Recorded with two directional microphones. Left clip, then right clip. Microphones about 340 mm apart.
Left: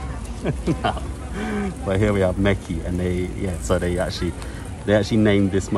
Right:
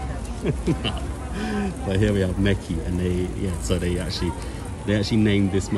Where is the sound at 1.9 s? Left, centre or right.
Left.